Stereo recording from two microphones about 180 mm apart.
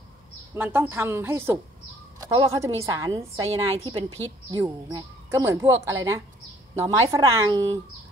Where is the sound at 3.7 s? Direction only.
30° right (ahead or behind).